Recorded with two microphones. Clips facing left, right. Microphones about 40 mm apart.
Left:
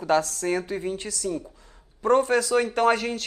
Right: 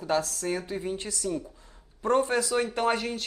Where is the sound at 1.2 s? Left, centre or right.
Centre.